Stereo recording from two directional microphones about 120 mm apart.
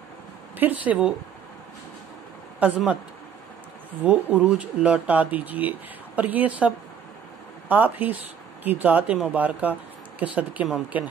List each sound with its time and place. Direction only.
0.6 s speech: 15° right (ahead or behind)
2.6 s speech: 15° right (ahead or behind)
4.0 s speech: 15° right (ahead or behind)